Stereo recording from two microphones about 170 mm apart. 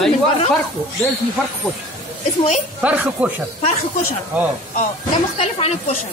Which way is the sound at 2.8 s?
10° right (ahead or behind).